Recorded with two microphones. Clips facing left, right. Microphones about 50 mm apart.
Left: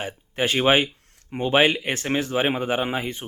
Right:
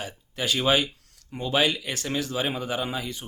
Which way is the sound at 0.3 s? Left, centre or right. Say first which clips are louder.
Left 4 dB; left.